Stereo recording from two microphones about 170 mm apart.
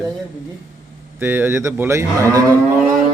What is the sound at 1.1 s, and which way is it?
A man's voice, 10° right (ahead or behind).